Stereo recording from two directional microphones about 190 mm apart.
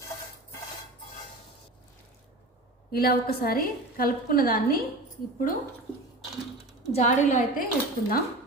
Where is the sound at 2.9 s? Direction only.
55° left (ahead or behind).